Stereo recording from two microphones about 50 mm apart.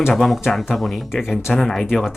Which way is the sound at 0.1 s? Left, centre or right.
Centre.